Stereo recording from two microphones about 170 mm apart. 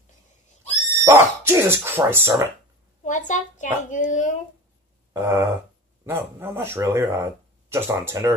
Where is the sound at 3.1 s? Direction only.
45° left (ahead or behind).